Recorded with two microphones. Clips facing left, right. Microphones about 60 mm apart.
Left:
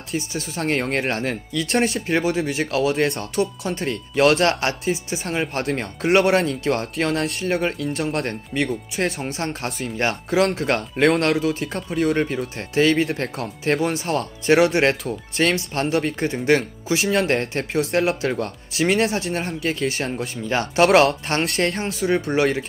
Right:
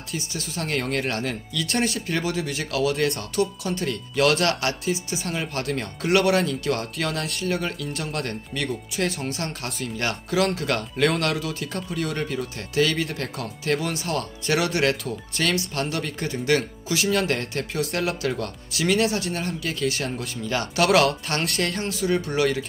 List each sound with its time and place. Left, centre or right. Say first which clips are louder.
0.3 s speech: left 4 dB; left